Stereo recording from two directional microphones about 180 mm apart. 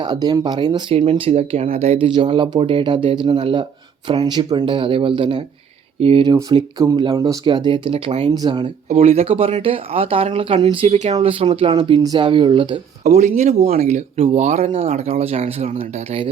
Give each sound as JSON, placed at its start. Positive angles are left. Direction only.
{"t": 0.0, "sound": "speech", "side_deg": -20}
{"t": 8.9, "sound": "speech", "side_deg": -35}
{"t": 13.1, "sound": "speech", "side_deg": -40}
{"t": 13.7, "sound": "speech", "side_deg": -55}
{"t": 13.9, "sound": "speech", "side_deg": -40}